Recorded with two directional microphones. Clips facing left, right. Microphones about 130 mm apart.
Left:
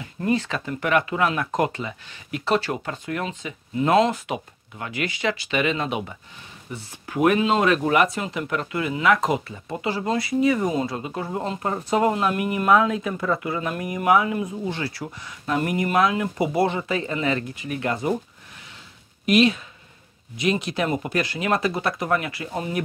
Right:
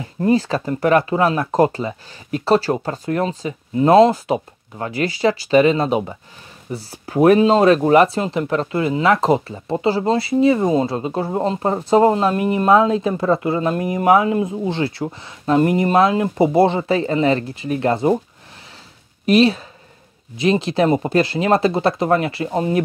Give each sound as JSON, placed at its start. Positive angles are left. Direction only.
{"t": 0.0, "sound": "speech", "side_deg": -30}
{"t": 19.2, "sound": "speech", "side_deg": -35}